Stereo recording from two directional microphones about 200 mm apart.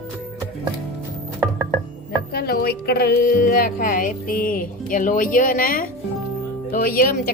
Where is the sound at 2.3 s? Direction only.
50° left (ahead or behind).